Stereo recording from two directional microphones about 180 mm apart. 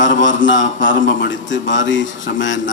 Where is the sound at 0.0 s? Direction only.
90° left.